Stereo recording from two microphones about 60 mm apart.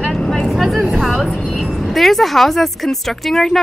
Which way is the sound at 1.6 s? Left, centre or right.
Centre.